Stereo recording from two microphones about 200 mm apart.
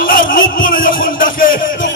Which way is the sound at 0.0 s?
45° left (ahead or behind).